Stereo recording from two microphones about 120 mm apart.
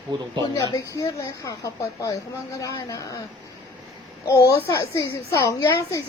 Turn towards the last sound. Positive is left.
turn(degrees=25)  # may be behind; listen again after turning